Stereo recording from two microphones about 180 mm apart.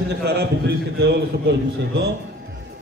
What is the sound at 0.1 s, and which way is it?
Speech, 65° right (ahead or behind).